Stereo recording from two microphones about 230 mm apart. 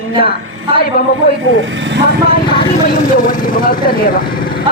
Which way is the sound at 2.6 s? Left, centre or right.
Left.